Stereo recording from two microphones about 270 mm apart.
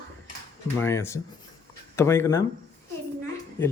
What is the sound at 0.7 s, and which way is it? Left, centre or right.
Speech, centre.